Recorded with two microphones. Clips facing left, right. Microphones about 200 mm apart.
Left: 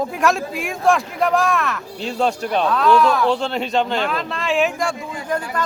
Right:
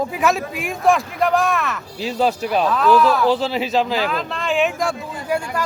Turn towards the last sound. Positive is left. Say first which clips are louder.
# right 1 dB
turn(degrees=-10)  # may be behind; listen again after turning